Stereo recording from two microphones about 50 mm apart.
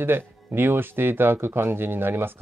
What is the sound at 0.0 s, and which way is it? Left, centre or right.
Speech, right.